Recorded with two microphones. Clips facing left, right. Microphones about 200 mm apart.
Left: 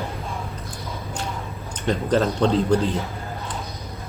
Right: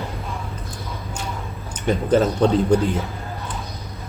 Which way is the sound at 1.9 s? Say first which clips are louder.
Right 3 dB; 10° right (ahead or behind).